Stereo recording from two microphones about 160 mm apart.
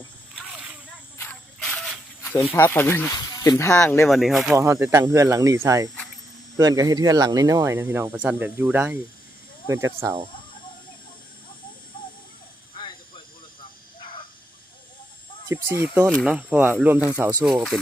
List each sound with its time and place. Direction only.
0.5 s a sound: 5° right (ahead or behind)
1.2 s a sound: 5° left (ahead or behind)
2.5 s speech: 10° left (ahead or behind)
3.7 s speech: 10° left (ahead or behind)
4.5 s speech: 20° right (ahead or behind)
15.4 s speech: 15° right (ahead or behind)